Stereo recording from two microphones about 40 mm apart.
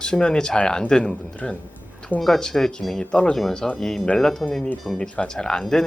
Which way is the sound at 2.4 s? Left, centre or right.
Centre.